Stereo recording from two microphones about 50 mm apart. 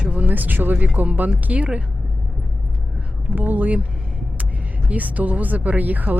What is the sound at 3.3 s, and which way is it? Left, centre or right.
Speech, right.